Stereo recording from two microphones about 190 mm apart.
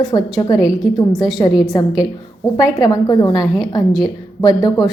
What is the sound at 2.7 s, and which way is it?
A woman's voice, 20° left (ahead or behind).